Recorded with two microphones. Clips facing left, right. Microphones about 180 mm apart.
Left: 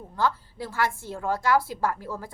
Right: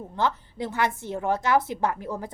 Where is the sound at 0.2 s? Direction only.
20° right (ahead or behind).